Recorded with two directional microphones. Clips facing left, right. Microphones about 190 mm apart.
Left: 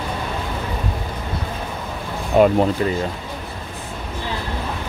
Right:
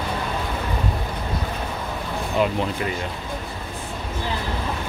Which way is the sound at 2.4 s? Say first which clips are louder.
Left 8 dB; 50° left (ahead or behind).